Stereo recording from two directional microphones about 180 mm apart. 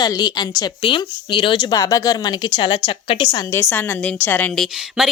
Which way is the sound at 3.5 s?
10° left (ahead or behind).